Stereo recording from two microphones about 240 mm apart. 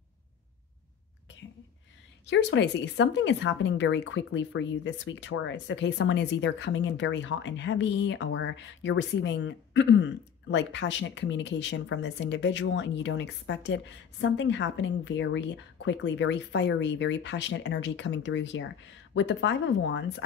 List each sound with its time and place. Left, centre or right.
2.2 s speech: left